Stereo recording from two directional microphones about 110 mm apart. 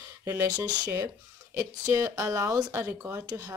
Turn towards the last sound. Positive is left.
turn(degrees=-15)  # may be behind; listen again after turning